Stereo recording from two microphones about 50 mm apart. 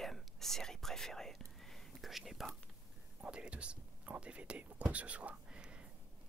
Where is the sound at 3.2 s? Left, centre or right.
Right.